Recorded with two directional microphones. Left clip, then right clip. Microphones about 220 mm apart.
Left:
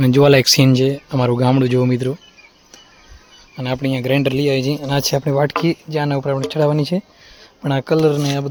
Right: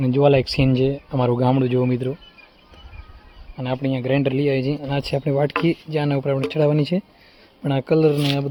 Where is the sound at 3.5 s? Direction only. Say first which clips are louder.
Left 3 dB; 15° left (ahead or behind).